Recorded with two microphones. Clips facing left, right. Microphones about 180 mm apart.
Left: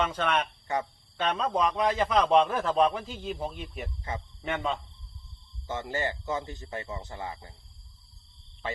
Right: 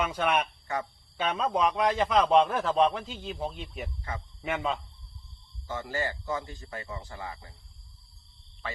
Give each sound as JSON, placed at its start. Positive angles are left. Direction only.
{"t": 0.0, "sound": "speech", "side_deg": -10}
{"t": 0.7, "sound": "a man's voice", "side_deg": 20}
{"t": 1.1, "sound": "a man's voice", "side_deg": -10}
{"t": 4.1, "sound": "a man's voice", "side_deg": 20}
{"t": 4.4, "sound": "a man's voice", "side_deg": -5}
{"t": 5.6, "sound": "a man's voice", "side_deg": 20}